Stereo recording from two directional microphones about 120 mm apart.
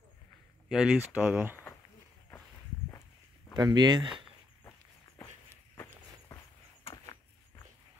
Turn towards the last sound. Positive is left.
turn(degrees=20)  # may be behind; listen again after turning